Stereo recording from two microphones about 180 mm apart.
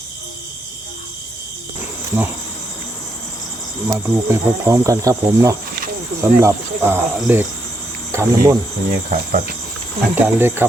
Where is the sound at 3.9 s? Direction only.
15° right (ahead or behind).